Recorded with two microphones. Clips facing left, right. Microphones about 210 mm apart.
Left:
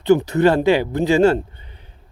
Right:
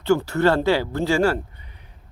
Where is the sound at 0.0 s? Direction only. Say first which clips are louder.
Left 4 dB; 20° left (ahead or behind).